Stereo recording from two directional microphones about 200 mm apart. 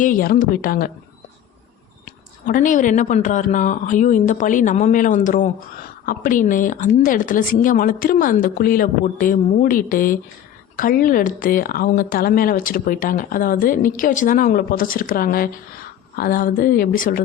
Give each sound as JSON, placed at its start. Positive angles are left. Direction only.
{"t": 0.0, "sound": "speech", "side_deg": 45}
{"t": 2.0, "sound": "speech", "side_deg": 45}